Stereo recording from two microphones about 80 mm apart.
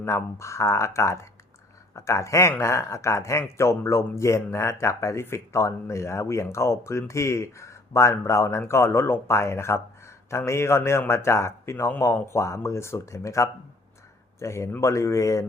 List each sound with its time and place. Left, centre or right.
0.0 s speech: left